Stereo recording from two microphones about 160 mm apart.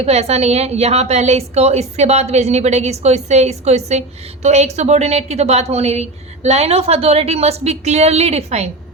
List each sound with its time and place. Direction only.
0.0 s a woman's voice: 40° right (ahead or behind)